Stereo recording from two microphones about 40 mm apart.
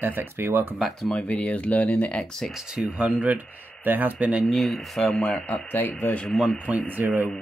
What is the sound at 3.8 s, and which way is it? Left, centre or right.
Speech, right.